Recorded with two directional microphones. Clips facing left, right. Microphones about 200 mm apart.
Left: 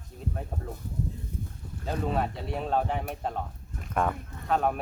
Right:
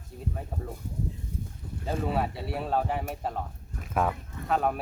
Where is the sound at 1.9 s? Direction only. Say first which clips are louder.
Even; 5° right (ahead or behind).